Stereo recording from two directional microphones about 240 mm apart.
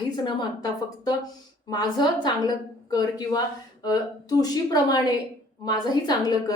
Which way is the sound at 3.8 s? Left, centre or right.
Centre.